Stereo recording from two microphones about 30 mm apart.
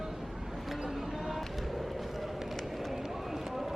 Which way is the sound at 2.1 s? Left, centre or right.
Centre.